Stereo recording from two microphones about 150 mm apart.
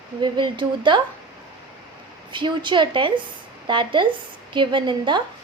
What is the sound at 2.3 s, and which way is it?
A woman's voice, 30° right (ahead or behind).